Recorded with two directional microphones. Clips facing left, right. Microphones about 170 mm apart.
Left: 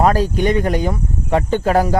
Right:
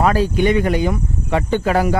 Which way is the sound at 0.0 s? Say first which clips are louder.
Even; 40° left (ahead or behind).